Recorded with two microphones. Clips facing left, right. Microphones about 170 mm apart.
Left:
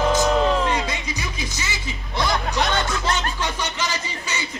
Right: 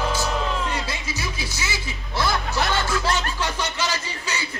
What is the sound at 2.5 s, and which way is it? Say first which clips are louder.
Music: left 1 dB; 20° left (ahead or behind).